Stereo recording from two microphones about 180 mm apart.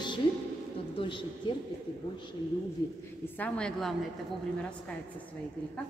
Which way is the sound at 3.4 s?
5° left (ahead or behind).